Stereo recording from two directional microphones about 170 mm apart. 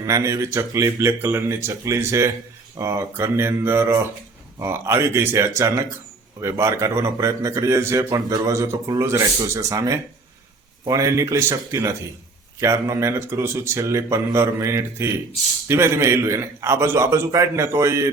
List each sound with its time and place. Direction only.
0.0 s speech: 20° right (ahead or behind)